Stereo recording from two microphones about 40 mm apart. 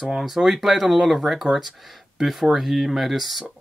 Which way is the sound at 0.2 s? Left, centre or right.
Centre.